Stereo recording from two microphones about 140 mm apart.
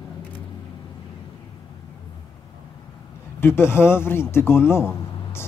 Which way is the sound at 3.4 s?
15° left (ahead or behind).